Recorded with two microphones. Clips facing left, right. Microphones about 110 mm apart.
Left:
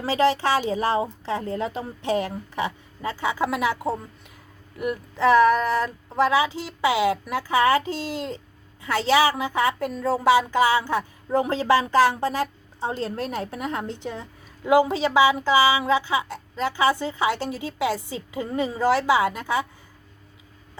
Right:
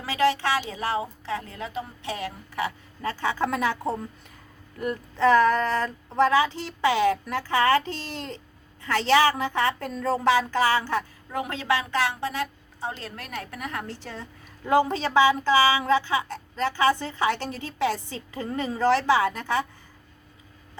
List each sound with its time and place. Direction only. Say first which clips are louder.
0.0 s a woman's voice: left 3 dB; 30° left (ahead or behind)
2.6 s a woman's voice: left 1 dB; 20° left (ahead or behind)
11.3 s a woman's voice: left 7 dB; 30° left (ahead or behind); by 19.6 s 15° left (ahead or behind)